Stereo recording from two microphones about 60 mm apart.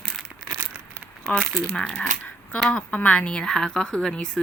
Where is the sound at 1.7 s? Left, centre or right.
Centre.